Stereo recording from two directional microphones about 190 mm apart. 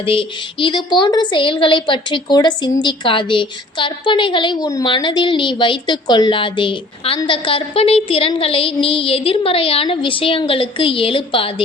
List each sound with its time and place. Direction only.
0.0 s a woman's voice: 25° left (ahead or behind)